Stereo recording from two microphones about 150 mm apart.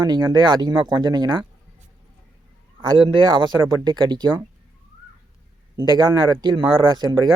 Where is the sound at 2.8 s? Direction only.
30° right (ahead or behind).